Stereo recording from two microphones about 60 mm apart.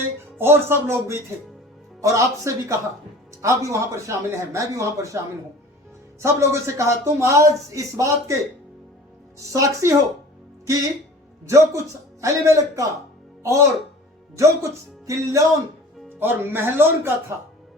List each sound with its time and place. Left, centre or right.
0.3 s music: right
2.0 s speech: right
6.1 s speech: right
9.4 s speech: right
11.4 s speech: right
16.0 s speech: right